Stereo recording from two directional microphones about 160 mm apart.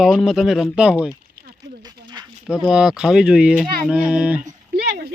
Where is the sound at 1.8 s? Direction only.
25° right (ahead or behind).